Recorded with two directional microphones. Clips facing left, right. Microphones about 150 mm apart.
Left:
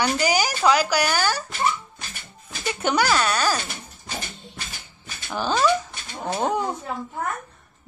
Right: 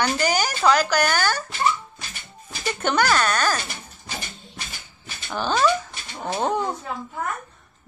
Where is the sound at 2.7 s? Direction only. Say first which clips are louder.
Even; 10° left (ahead or behind).